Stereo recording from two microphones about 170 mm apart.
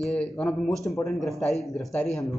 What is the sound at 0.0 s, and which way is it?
Speech, 5° left (ahead or behind).